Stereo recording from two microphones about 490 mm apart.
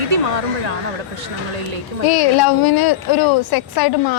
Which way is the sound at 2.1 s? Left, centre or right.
Left.